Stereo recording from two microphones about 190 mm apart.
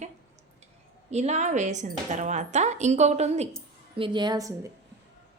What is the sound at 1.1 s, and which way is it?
A woman's voice, 35° right (ahead or behind).